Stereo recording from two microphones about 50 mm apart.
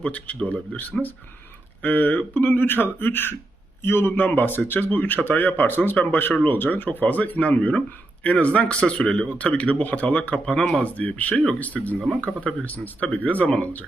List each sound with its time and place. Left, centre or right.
0.0 s speech: left
1.8 s speech: left
10.4 s speech: centre
10.8 s speech: left